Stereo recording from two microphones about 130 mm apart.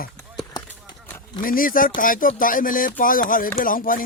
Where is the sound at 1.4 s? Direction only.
90° left.